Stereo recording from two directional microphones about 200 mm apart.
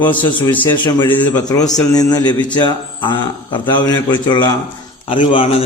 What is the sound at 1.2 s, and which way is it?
Speech, 10° left (ahead or behind).